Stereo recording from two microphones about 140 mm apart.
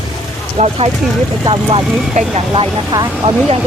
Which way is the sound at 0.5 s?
50° right (ahead or behind).